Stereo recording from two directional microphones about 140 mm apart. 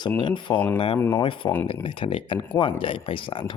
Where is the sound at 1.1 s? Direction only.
35° left (ahead or behind).